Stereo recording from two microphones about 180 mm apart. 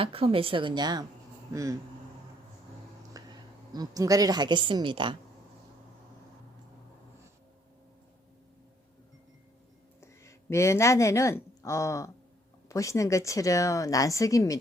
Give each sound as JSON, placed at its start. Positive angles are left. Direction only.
{"t": 0.0, "sound": "a woman's voice", "side_deg": -30}
{"t": 3.1, "sound": "a sound", "side_deg": -20}
{"t": 3.7, "sound": "a woman's voice", "side_deg": -20}
{"t": 10.0, "sound": "a woman's voice", "side_deg": 15}